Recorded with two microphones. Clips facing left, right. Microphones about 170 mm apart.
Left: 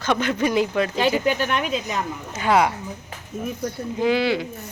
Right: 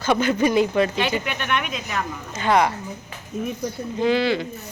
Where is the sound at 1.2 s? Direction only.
35° left (ahead or behind).